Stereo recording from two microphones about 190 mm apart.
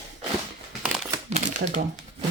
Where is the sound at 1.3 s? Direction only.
40° right (ahead or behind).